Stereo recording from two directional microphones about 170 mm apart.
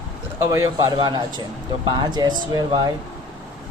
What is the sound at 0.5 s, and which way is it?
Speech, 20° right (ahead or behind).